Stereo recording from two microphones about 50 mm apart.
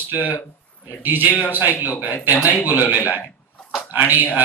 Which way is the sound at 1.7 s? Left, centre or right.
Left.